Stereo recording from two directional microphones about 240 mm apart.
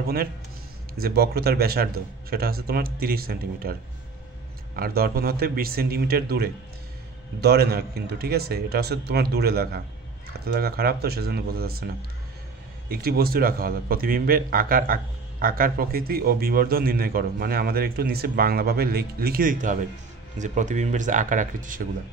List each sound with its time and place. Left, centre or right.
0.0 s a man's voice: right
4.7 s a man's voice: right